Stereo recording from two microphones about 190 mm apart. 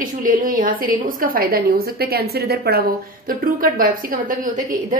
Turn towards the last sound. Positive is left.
turn(degrees=-45)  # may be behind; listen again after turning